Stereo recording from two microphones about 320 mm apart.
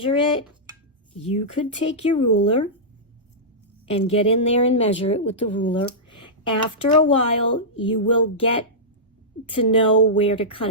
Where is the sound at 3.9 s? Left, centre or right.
Centre.